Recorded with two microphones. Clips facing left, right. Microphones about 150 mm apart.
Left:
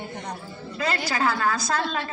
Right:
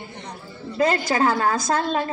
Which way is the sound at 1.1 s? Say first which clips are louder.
Right 4 dB; 25° right (ahead or behind).